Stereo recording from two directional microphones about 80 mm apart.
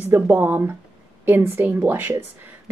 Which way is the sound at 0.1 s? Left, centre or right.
Right.